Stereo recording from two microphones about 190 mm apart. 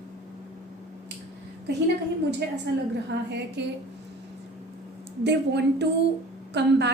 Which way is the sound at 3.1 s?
90° right.